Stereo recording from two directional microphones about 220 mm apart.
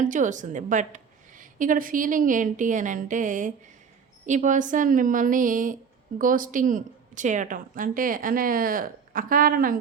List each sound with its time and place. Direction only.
0.0 s a woman's voice: 35° right (ahead or behind)